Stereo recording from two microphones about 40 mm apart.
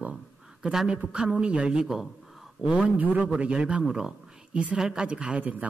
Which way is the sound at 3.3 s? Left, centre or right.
Right.